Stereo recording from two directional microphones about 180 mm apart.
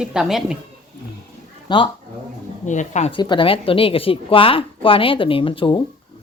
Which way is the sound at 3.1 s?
25° left (ahead or behind).